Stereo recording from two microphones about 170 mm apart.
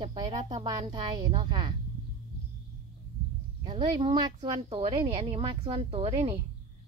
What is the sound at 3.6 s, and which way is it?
A woman's voice, 30° right (ahead or behind).